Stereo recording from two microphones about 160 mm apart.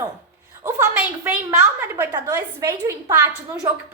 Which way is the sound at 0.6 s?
15° right (ahead or behind).